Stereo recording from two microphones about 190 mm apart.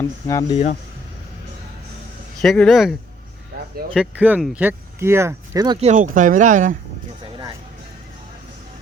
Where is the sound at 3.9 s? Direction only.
5° right (ahead or behind).